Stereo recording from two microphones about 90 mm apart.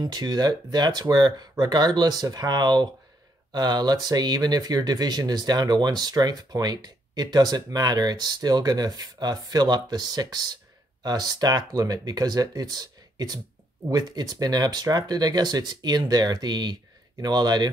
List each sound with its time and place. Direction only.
0.0 s speech: 50° right (ahead or behind)